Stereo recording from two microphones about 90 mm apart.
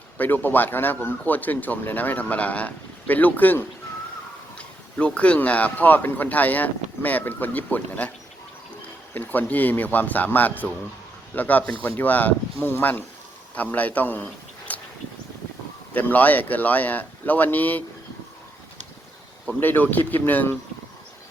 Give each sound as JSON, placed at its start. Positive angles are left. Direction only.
{"t": 0.2, "sound": "speech", "side_deg": 20}
{"t": 9.1, "sound": "speech", "side_deg": 20}
{"t": 14.7, "sound": "a sound", "side_deg": 20}
{"t": 15.9, "sound": "speech", "side_deg": 20}
{"t": 19.5, "sound": "speech", "side_deg": 20}